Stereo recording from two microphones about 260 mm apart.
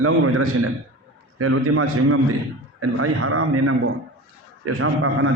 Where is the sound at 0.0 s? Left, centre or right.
Right.